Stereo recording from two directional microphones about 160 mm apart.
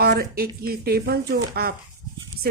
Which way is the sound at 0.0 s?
75° right (ahead or behind).